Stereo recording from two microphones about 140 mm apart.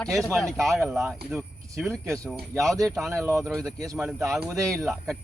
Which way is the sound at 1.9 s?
20° right (ahead or behind).